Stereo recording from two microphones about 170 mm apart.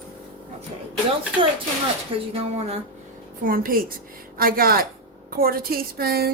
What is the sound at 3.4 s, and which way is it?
A woman's voice, 55° right (ahead or behind).